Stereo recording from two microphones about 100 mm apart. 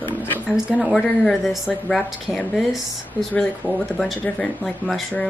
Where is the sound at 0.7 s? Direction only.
Centre (ahead or behind).